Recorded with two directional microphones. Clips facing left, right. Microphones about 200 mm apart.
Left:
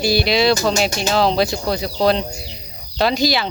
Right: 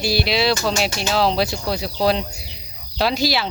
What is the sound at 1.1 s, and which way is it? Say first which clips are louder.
Speech: left 2 dB; 5° right (ahead or behind).